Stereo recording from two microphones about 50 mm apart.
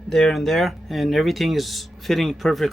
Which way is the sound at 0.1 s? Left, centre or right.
Centre.